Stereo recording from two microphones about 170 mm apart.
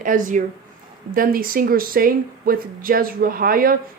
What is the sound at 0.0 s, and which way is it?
Speech, 50° right (ahead or behind).